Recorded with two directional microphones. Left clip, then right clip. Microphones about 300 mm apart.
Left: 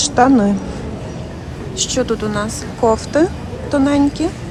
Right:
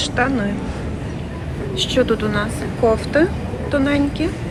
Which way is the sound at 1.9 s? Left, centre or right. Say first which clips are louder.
Right 1 dB; centre.